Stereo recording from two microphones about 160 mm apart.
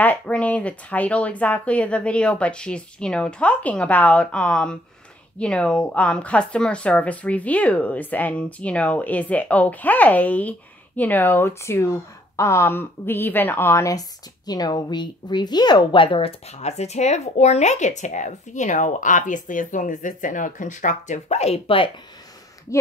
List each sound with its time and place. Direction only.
0.0 s speech: 10° left (ahead or behind); by 21.9 s 35° left (ahead or behind)
22.7 s speech: 20° left (ahead or behind)